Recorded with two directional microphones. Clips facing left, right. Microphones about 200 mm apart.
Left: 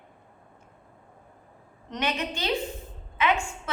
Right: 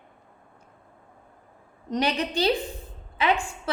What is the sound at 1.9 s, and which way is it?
A woman's voice, 35° right (ahead or behind).